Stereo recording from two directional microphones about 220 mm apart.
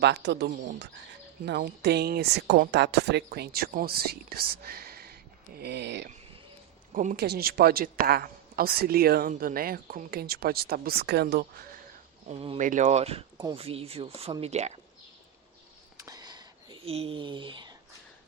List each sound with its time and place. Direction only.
0.0 s a man's voice: 50° right (ahead or behind)
6.9 s a man's voice: 35° right (ahead or behind)
12.3 s speech: 30° right (ahead or behind)
16.0 s a sound: 15° right (ahead or behind)